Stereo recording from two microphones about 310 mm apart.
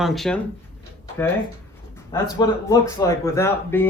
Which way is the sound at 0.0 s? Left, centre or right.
Centre.